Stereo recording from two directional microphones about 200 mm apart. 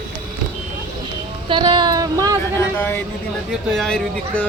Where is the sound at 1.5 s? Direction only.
25° right (ahead or behind).